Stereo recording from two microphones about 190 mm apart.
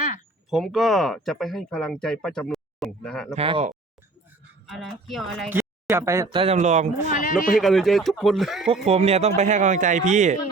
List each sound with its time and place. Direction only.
0.5 s speech: centre (ahead or behind)
3.3 s speech: 30° right (ahead or behind)
4.7 s speech: centre (ahead or behind)
5.5 s speech: 10° right (ahead or behind)
6.3 s speech: 30° right (ahead or behind)
7.1 s speech: 45° left (ahead or behind)
7.6 s speech: centre (ahead or behind)
8.9 s speech: 35° right (ahead or behind)